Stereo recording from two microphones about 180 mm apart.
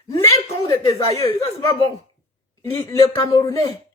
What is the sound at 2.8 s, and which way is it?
A woman's voice, 15° left (ahead or behind).